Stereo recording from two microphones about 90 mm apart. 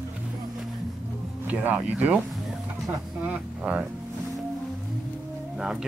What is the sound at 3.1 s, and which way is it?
Speech, 15° right (ahead or behind).